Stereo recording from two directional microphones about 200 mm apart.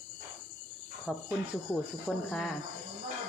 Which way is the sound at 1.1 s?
5° right (ahead or behind).